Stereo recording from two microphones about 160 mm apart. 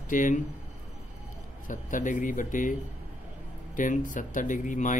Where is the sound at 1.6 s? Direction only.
55° left (ahead or behind).